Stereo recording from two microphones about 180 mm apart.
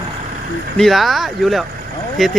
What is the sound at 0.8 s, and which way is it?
Speech, centre (ahead or behind).